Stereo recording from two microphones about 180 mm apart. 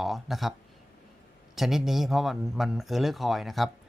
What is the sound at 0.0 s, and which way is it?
Speech, centre (ahead or behind).